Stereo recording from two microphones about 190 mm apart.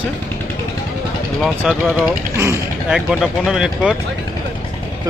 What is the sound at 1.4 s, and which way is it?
Speech, 5° right (ahead or behind).